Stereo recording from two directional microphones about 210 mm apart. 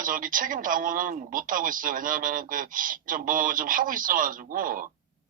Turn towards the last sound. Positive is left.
turn(degrees=-40)  # may be behind; listen again after turning